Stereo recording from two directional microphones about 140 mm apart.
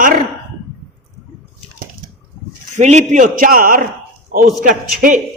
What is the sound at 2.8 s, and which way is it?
A man's voice, 55° right (ahead or behind).